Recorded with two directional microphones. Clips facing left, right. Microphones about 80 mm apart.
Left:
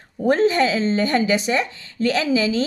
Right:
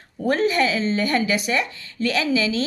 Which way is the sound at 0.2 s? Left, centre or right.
Left.